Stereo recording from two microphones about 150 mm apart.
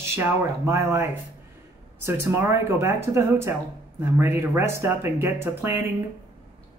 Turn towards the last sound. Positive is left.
turn(degrees=-15)  # may be behind; listen again after turning